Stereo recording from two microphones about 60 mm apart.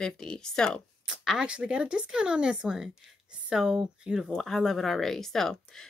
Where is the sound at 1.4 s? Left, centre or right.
Centre.